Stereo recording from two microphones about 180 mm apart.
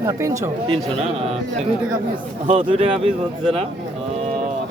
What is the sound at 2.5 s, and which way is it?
Speech, 30° right (ahead or behind).